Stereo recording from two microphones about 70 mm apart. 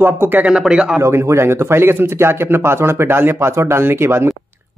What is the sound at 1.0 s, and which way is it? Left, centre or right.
Speech, right.